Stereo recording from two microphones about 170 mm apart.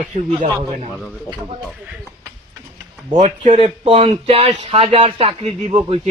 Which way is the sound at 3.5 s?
30° right (ahead or behind).